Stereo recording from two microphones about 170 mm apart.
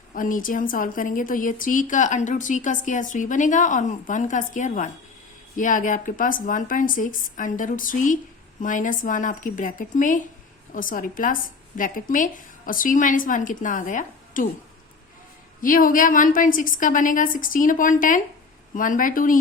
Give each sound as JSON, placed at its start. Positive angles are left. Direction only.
{"t": 0.1, "sound": "speech", "side_deg": 50}
{"t": 15.6, "sound": "speech", "side_deg": 55}